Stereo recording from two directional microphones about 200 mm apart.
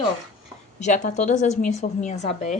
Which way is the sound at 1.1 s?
35° left (ahead or behind).